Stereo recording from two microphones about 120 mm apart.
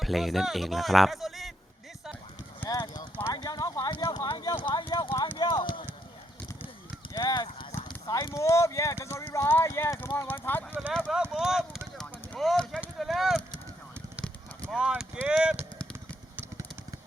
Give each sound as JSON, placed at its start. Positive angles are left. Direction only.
{"t": 0.0, "sound": "speech", "side_deg": 0}
{"t": 2.6, "sound": "clip-clop", "side_deg": 35}
{"t": 3.3, "sound": "a sound", "side_deg": 35}
{"t": 4.3, "sound": "clip-clop", "side_deg": 40}
{"t": 7.1, "sound": "clip-clop", "side_deg": 30}
{"t": 9.3, "sound": "speech", "side_deg": 20}
{"t": 11.1, "sound": "speech", "side_deg": -5}
{"t": 11.9, "sound": "clip-clop", "side_deg": 0}
{"t": 13.0, "sound": "speech", "side_deg": 0}
{"t": 14.7, "sound": "speech", "side_deg": -5}